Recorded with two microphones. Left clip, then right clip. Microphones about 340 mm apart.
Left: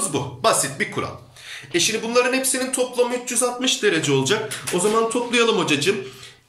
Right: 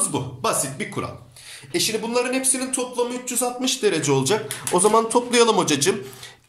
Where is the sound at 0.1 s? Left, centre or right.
Centre.